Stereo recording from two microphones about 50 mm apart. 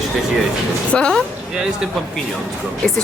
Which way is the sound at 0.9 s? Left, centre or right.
Centre.